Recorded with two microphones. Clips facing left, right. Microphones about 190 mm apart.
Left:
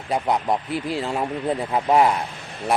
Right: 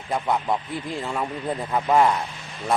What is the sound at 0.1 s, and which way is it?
Speech, 15° left (ahead or behind).